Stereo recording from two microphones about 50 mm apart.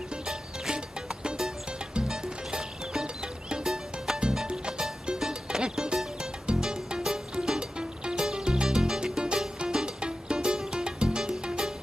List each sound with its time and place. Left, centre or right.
0.1 s music: centre